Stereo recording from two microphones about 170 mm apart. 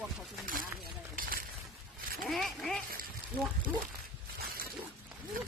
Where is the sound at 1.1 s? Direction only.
55° right (ahead or behind).